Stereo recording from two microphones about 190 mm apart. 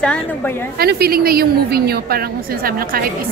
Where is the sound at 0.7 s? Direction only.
55° right (ahead or behind).